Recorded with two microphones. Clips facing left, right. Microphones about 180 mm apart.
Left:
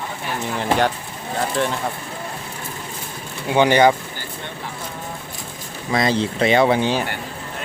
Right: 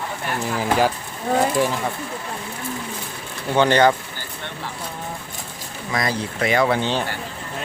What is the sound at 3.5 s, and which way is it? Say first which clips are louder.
Speech: left 2 dB; 15° left (ahead or behind).